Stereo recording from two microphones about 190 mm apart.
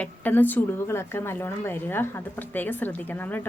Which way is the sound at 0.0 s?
10° left (ahead or behind).